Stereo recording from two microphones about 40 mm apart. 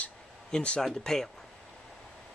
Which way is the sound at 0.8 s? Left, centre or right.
Centre.